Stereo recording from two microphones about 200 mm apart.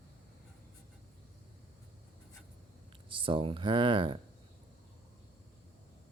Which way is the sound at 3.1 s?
25° right (ahead or behind).